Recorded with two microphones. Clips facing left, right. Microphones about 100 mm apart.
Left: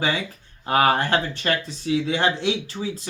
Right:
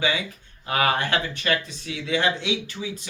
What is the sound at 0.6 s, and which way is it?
Speech, 35° left (ahead or behind).